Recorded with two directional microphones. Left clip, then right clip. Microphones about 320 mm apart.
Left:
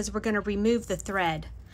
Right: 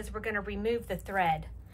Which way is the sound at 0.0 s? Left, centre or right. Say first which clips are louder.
Left 5 dB; centre.